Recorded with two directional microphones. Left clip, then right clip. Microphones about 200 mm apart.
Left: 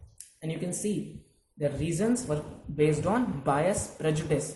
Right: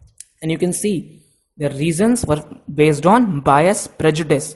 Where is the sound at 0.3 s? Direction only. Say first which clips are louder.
Right 15 dB; 50° right (ahead or behind).